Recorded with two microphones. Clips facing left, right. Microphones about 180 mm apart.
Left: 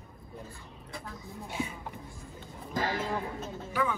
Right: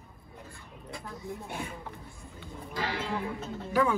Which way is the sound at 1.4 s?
60° right (ahead or behind).